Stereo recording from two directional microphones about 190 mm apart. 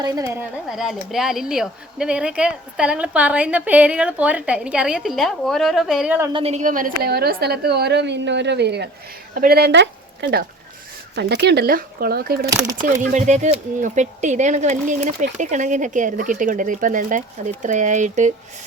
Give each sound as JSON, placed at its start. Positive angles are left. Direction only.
{"t": 0.0, "sound": "speech", "side_deg": -20}
{"t": 0.7, "sound": "a woman's voice", "side_deg": 0}
{"t": 6.3, "sound": "a woman's voice", "side_deg": -35}
{"t": 12.8, "sound": "speech", "side_deg": -40}